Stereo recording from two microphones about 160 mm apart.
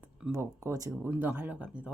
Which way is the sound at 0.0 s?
15° right (ahead or behind).